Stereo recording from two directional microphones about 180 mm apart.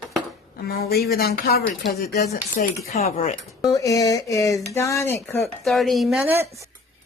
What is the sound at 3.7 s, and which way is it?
Speech, 20° left (ahead or behind).